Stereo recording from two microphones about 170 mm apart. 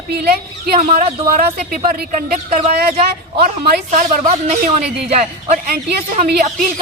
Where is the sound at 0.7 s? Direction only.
40° right (ahead or behind); by 4.1 s 55° right (ahead or behind).